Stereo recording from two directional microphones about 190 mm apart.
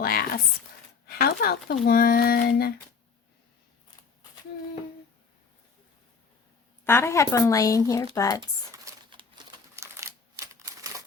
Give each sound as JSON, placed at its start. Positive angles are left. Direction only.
{"t": 0.0, "sound": "speech", "side_deg": 50}
{"t": 6.8, "sound": "a woman's voice", "side_deg": 15}
{"t": 8.4, "sound": "crumpling", "side_deg": -15}